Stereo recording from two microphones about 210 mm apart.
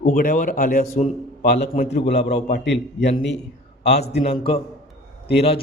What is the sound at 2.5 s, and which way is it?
A man's voice, 55° left (ahead or behind).